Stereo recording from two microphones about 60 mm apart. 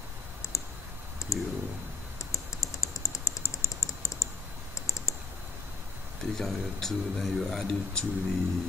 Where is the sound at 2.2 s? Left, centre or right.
Left.